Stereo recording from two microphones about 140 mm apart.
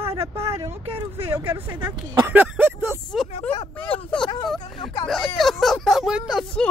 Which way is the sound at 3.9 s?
5° left (ahead or behind).